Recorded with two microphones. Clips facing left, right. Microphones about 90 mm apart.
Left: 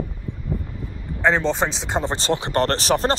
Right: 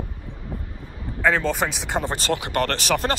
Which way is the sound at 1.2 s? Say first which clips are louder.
Left 2 dB; 25° left (ahead or behind).